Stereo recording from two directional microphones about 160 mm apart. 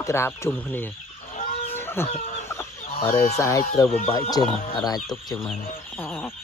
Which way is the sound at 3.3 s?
20° left (ahead or behind).